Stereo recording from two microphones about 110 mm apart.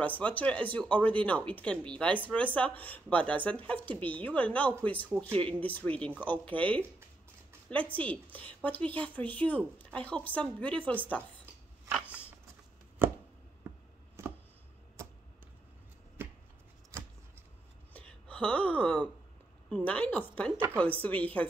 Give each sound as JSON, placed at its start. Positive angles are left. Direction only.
{"t": 0.0, "sound": "speech", "side_deg": 15}
{"t": 13.0, "sound": "chopping", "side_deg": -20}
{"t": 14.2, "sound": "a sound", "side_deg": -25}
{"t": 17.9, "sound": "gasp", "side_deg": 10}
{"t": 19.7, "sound": "speech", "side_deg": 15}